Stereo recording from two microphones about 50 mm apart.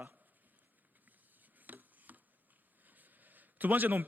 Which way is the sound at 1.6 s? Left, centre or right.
Right.